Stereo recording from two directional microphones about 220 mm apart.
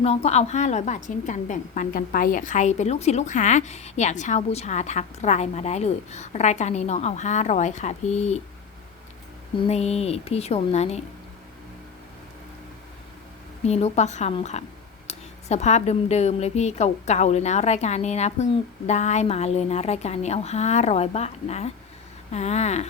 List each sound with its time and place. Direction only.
0.0 s a woman's voice: 30° left (ahead or behind)
9.6 s a woman's voice: 30° left (ahead or behind)
13.7 s a woman's voice: 30° left (ahead or behind)